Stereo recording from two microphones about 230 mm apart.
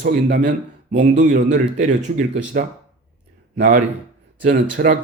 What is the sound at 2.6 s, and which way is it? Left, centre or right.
Speech, right.